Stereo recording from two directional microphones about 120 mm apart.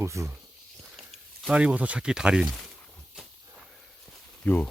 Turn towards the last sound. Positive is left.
turn(degrees=15)  # may be behind; listen again after turning